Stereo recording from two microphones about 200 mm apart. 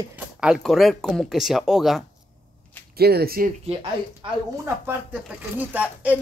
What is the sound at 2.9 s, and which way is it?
Speech, 50° right (ahead or behind).